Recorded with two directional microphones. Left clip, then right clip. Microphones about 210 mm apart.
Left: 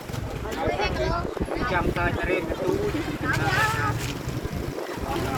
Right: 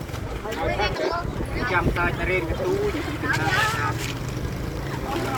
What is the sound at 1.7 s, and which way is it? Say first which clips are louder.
Speech: right 3 dB; 10° right (ahead or behind).